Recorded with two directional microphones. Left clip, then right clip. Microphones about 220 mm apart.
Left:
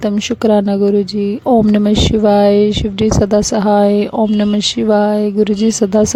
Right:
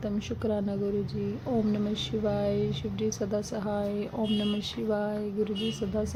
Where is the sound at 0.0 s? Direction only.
50° left (ahead or behind).